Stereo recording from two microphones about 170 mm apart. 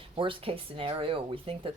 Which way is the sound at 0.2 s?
30° right (ahead or behind).